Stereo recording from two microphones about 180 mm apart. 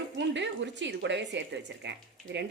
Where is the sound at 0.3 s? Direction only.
80° right.